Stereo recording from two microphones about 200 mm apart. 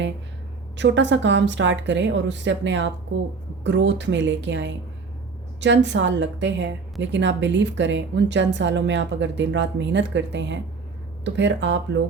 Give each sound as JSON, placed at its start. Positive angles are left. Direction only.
{"t": 0.8, "sound": "a woman's voice", "side_deg": -65}